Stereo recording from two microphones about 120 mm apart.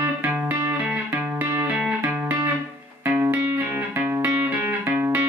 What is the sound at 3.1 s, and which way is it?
Music, 15° right (ahead or behind).